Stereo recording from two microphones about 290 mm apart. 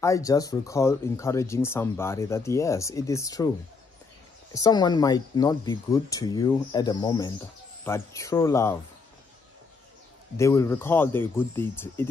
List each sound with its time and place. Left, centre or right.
0.0 s speech: centre
4.6 s speech: centre
10.3 s speech: centre